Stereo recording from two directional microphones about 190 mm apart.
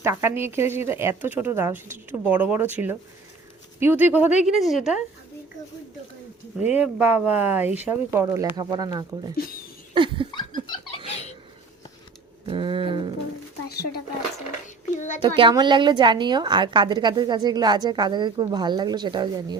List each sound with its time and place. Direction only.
0.0 s speech: 15° right (ahead or behind)
6.7 s speech: 10° right (ahead or behind)
9.9 s a sound: 25° right (ahead or behind)
10.7 s a sound: 30° left (ahead or behind)
12.5 s a woman's voice: 25° right (ahead or behind)
13.7 s speech: 55° left (ahead or behind)
14.9 s a child's voice: 40° left (ahead or behind)
15.2 s a woman's voice: 25° right (ahead or behind)